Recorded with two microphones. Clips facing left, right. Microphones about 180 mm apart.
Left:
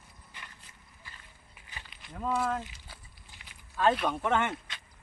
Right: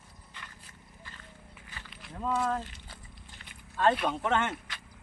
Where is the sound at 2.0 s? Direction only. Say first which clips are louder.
Even; centre (ahead or behind).